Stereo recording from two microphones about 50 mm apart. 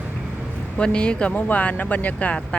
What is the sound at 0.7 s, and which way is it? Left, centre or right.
Speech, centre.